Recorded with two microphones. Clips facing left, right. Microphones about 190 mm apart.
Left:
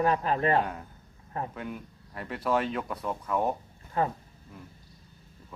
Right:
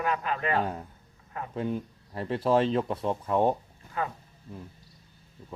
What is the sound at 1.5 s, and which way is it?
Speech, 30° right (ahead or behind).